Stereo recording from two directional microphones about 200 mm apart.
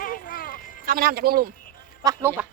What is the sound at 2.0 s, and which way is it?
Speech, 15° right (ahead or behind).